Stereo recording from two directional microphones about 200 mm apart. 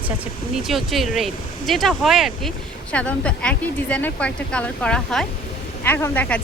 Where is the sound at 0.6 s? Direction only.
Centre (ahead or behind).